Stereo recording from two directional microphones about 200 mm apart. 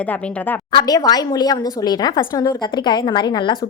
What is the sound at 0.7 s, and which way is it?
A woman's voice, 20° left (ahead or behind).